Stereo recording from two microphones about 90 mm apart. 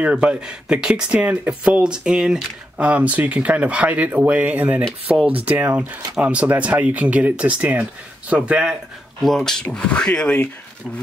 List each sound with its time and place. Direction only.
0.0 s speech: 15° right (ahead or behind)
9.2 s speech: 5° left (ahead or behind)